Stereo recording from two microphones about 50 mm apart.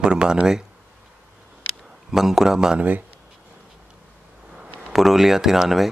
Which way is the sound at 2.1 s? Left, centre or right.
Centre.